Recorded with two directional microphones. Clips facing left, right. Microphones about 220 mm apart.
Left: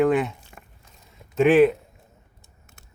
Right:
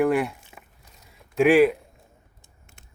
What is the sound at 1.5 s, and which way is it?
Speech, 10° right (ahead or behind).